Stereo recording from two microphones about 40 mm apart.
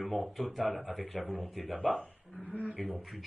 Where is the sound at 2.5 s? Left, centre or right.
Left.